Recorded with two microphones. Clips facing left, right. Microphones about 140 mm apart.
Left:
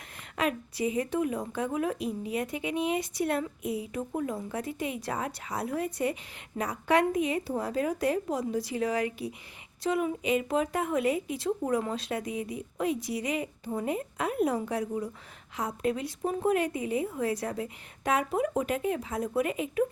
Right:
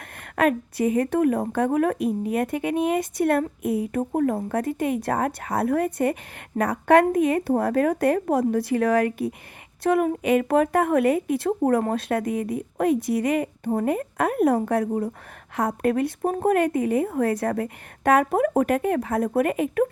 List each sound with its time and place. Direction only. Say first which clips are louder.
0.3 s a woman's voice: right 8 dB; 55° right (ahead or behind)